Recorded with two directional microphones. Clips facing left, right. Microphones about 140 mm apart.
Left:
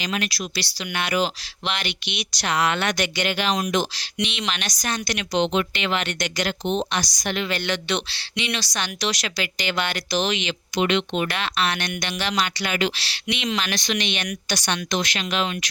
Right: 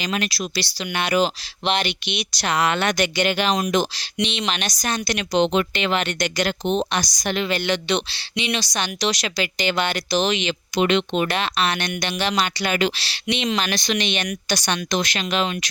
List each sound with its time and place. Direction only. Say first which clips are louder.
0.0 s speech: right 2 dB; 35° right (ahead or behind)
4.3 s speech: right 3 dB; 25° right (ahead or behind)
5.3 s speech: right 3 dB; 40° right (ahead or behind)
7.2 s speech: right 4 dB; 30° right (ahead or behind)
12.6 s speech: right 3 dB; 40° right (ahead or behind)
13.1 s speech: right 3 dB; 30° right (ahead or behind)